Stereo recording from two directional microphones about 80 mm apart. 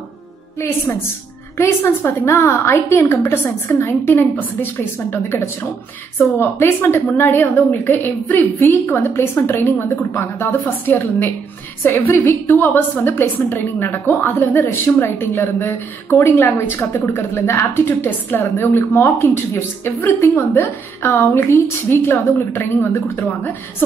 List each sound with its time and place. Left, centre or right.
1.6 s a woman's voice: left